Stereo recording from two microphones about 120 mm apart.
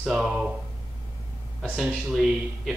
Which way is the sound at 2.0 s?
Centre (ahead or behind).